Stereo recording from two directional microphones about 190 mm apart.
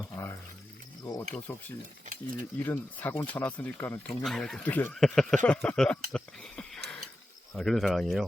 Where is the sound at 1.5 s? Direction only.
10° left (ahead or behind).